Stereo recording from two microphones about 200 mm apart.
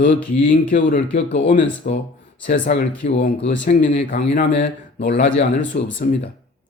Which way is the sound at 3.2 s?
60° left (ahead or behind).